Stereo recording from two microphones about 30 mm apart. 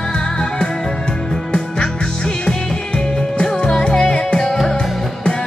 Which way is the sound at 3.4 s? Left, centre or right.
Left.